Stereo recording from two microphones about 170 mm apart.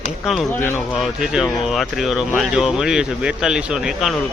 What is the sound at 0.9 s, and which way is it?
Speech, 5° right (ahead or behind).